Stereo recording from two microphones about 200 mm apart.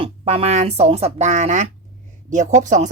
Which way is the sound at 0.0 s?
30° right (ahead or behind).